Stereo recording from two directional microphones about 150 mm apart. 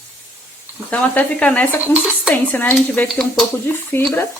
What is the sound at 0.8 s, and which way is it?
Speech, 10° left (ahead or behind).